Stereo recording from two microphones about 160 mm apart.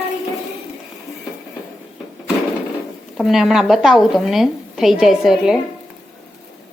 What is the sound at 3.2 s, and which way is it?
Speech, centre (ahead or behind).